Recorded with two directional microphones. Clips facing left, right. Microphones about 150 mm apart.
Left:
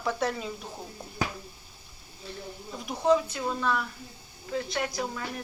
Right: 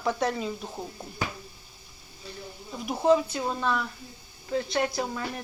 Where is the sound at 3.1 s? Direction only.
30° right (ahead or behind).